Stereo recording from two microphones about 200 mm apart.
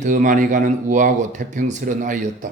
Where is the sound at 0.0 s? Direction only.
40° right (ahead or behind).